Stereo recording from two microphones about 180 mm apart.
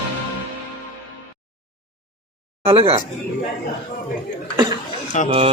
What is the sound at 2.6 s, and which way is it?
Speech, 30° right (ahead or behind).